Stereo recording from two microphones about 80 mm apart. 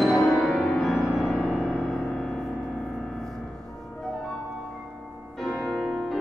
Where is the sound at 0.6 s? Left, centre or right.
Centre.